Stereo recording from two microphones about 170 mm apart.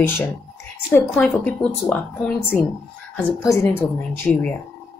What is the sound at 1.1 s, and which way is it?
Speech, 5° left (ahead or behind).